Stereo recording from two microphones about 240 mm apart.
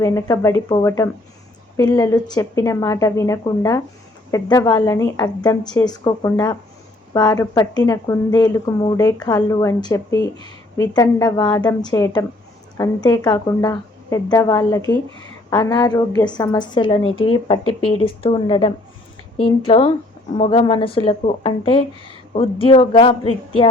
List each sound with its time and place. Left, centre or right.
0.0 s speech: centre